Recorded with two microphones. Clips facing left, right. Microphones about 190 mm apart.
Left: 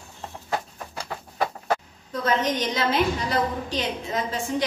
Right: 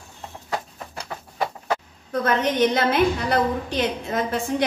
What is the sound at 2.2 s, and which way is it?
A woman's voice, 60° right (ahead or behind).